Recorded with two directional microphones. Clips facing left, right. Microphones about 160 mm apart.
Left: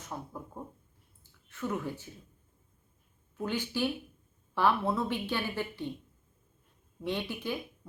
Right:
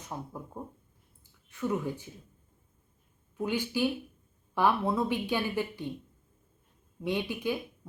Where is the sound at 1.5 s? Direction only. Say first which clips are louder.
Right 3 dB; 15° right (ahead or behind).